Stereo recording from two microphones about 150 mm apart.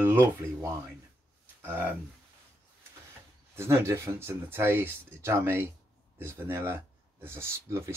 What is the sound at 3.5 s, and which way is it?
Speech, 15° right (ahead or behind).